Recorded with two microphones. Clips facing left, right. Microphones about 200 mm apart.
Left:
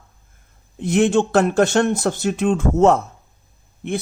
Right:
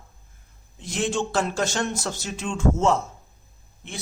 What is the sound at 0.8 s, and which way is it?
Speech, 60° left (ahead or behind).